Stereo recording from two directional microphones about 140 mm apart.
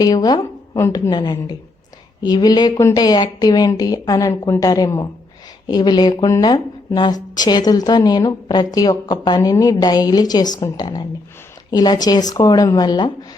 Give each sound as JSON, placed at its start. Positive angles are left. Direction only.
{"t": 0.0, "sound": "speech", "side_deg": 30}
{"t": 1.1, "sound": "a woman's voice", "side_deg": 30}